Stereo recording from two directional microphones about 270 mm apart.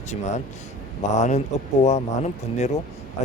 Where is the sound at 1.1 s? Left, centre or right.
Left.